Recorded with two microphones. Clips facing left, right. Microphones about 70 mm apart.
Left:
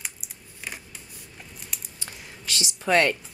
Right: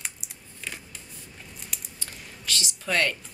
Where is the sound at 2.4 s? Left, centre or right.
Centre.